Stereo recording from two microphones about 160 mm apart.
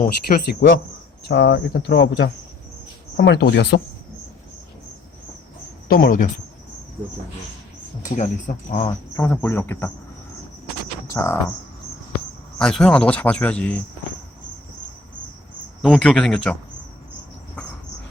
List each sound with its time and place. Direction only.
0.0 s speech: 65° left (ahead or behind)
1.2 s speech: 90° left
5.9 s speech: 65° left (ahead or behind)
7.0 s speech: 25° right (ahead or behind)
8.5 s speech: 45° left (ahead or behind)
8.9 s speech: 15° left (ahead or behind)
11.1 s a sound: 15° left (ahead or behind)
12.5 s speech: 5° left (ahead or behind)
15.8 s speech: centre (ahead or behind)